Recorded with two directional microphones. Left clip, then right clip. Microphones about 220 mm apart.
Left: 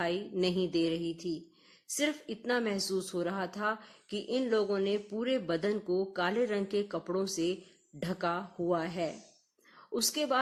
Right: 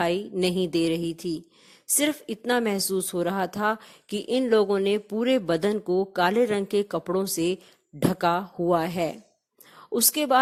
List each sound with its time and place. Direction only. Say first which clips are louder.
0.0 s a woman's voice: right 7 dB; 40° right (ahead or behind)